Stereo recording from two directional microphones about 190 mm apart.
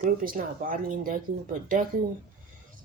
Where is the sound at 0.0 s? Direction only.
45° right (ahead or behind).